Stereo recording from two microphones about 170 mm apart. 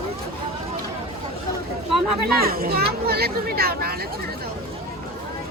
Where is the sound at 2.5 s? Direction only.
60° right (ahead or behind).